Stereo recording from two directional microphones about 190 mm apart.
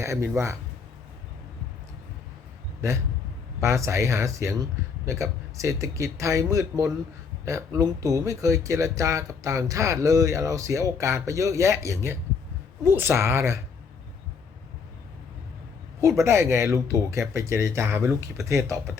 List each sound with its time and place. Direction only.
0.0 s speech: 15° right (ahead or behind)
3.6 s speech: 15° right (ahead or behind)
16.0 s speech: 15° right (ahead or behind)